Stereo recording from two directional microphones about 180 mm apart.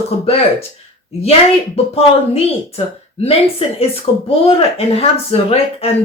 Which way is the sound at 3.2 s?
35° left (ahead or behind).